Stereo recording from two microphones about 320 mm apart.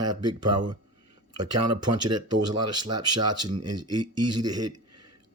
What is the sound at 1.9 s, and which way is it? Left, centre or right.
Speech, right.